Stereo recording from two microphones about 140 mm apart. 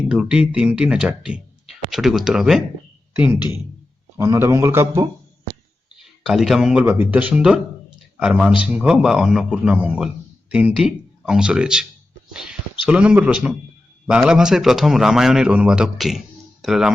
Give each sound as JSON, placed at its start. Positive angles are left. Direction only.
{"t": 0.0, "sound": "a man's voice", "side_deg": -5}
{"t": 6.2, "sound": "a man's voice", "side_deg": 0}